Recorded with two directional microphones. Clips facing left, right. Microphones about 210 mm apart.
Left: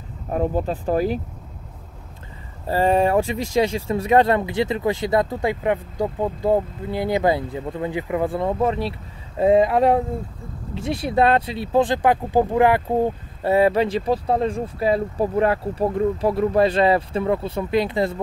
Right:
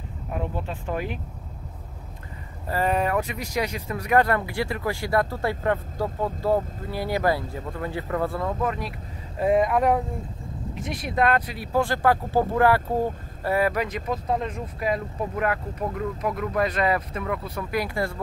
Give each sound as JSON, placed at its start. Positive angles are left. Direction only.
{"t": 0.3, "sound": "speech", "side_deg": 40}
{"t": 2.6, "sound": "speech", "side_deg": 30}